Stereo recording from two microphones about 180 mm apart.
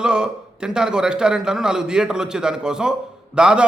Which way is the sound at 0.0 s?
5° right (ahead or behind).